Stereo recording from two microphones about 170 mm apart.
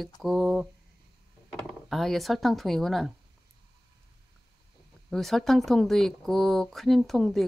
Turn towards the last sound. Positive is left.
turn(degrees=0)  # may be behind; listen again after turning